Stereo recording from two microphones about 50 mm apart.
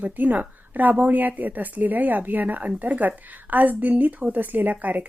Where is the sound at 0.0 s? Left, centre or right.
Right.